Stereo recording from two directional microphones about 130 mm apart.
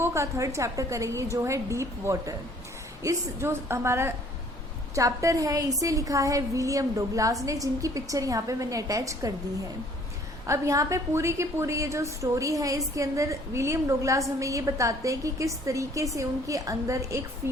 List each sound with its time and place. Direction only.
0.0 s a woman's voice: 20° right (ahead or behind)
10.4 s a woman's voice: 25° right (ahead or behind)